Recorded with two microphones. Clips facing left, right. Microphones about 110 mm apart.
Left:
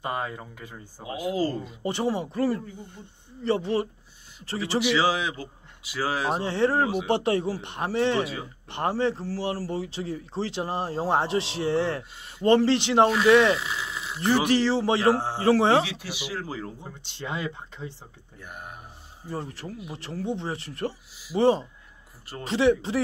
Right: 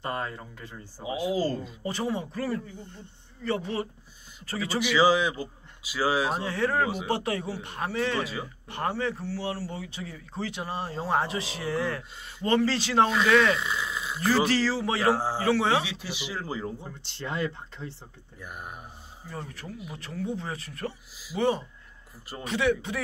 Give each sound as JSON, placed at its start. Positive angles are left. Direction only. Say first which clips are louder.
{"t": 0.0, "sound": "speech", "louder": "left 2 dB", "side_deg": 10}
{"t": 1.8, "sound": "speech", "louder": "left 6 dB", "side_deg": 25}
{"t": 4.9, "sound": "a man's voice", "louder": "right 2 dB", "side_deg": 0}
{"t": 6.3, "sound": "speech", "louder": "left 3 dB", "side_deg": 30}
{"t": 13.6, "sound": "a sound", "louder": "right 1 dB", "side_deg": 0}
{"t": 14.2, "sound": "speech", "louder": "left 2 dB", "side_deg": 20}
{"t": 15.8, "sound": "speech", "louder": "left 3 dB", "side_deg": 70}
{"t": 16.3, "sound": "a man's voice", "louder": "right 3 dB", "side_deg": 0}
{"t": 17.2, "sound": "speech", "louder": "right 1 dB", "side_deg": 15}
{"t": 18.4, "sound": "a man's voice", "louder": "right 1 dB", "side_deg": 0}
{"t": 19.2, "sound": "speech", "louder": "left 5 dB", "side_deg": 30}